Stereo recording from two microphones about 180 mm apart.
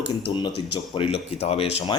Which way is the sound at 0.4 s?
30° left (ahead or behind).